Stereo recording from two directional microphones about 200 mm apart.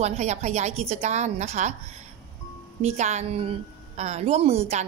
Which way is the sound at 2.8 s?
35° right (ahead or behind).